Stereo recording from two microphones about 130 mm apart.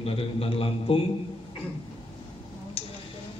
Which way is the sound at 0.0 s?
45° left (ahead or behind).